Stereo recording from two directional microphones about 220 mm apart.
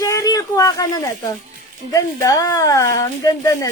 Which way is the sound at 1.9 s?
15° left (ahead or behind).